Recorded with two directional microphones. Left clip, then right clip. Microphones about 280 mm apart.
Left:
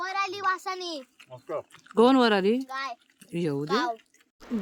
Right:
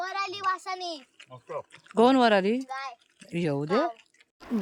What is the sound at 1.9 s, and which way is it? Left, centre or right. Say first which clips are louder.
Speech: even; centre.